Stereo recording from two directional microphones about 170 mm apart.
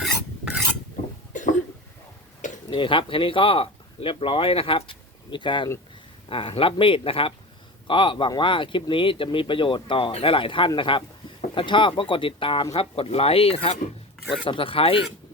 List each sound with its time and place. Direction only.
1.3 s cough: 50° left (ahead or behind)
2.6 s a man's voice: 30° left (ahead or behind)